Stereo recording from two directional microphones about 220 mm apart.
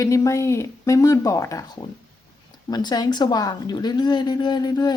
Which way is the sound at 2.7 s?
20° left (ahead or behind).